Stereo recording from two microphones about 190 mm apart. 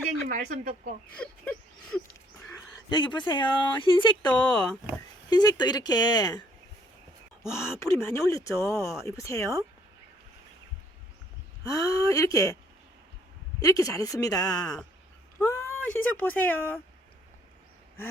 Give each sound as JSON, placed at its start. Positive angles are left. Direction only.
{"t": 0.3, "sound": "speech", "side_deg": -40}
{"t": 1.2, "sound": "a sound", "side_deg": 5}
{"t": 2.5, "sound": "speech", "side_deg": 25}
{"t": 4.4, "sound": "speech", "side_deg": 5}
{"t": 5.3, "sound": "speech", "side_deg": 20}
{"t": 7.5, "sound": "speech", "side_deg": 15}
{"t": 11.6, "sound": "speech", "side_deg": 15}
{"t": 13.6, "sound": "speech", "side_deg": 20}
{"t": 15.4, "sound": "a sound", "side_deg": 15}
{"t": 16.0, "sound": "speech", "side_deg": 10}